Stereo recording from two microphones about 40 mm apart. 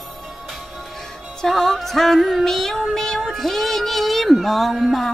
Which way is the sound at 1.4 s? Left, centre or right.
Centre.